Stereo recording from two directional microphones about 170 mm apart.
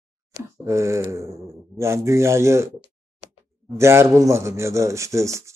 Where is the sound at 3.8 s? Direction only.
15° right (ahead or behind).